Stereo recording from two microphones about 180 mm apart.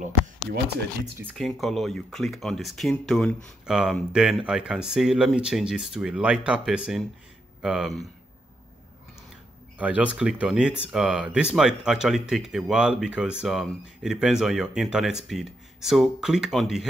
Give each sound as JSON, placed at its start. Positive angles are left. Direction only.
{"t": 1.4, "sound": "speech", "side_deg": 0}
{"t": 9.8, "sound": "speech", "side_deg": -5}